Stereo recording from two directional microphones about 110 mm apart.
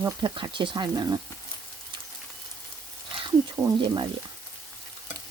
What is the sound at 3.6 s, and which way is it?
Frying, 30° right (ahead or behind).